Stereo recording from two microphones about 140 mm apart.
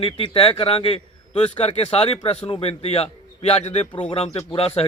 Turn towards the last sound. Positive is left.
turn(degrees=45)  # may be behind; listen again after turning